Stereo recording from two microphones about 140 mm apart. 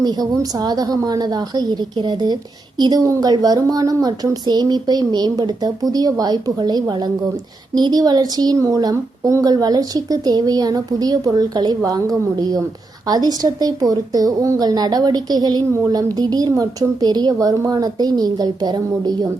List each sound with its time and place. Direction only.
0.0 s a woman's voice: 25° right (ahead or behind)